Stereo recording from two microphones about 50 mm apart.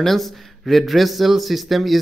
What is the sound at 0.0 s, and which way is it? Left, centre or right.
Speech, centre.